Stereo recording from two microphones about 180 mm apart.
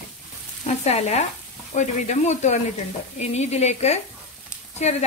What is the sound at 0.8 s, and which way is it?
Speech, 40° left (ahead or behind).